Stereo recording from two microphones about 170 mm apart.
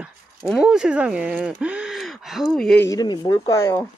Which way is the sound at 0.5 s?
Centre (ahead or behind).